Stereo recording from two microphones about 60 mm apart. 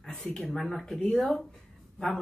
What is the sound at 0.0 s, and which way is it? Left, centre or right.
Speech, centre.